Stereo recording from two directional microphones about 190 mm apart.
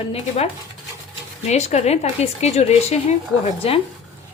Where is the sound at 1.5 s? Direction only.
35° left (ahead or behind).